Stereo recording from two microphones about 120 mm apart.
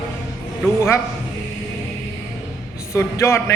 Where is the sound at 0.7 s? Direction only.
25° left (ahead or behind).